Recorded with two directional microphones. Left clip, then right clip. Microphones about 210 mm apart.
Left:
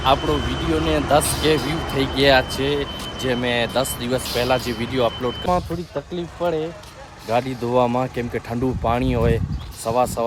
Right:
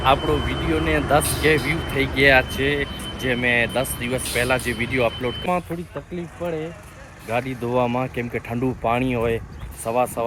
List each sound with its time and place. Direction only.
0.0 s speech: 10° left (ahead or behind)